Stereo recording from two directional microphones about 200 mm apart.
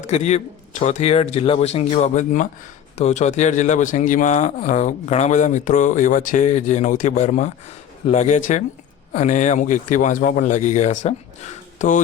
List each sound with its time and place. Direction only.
0.0 s a man's voice: 35° left (ahead or behind)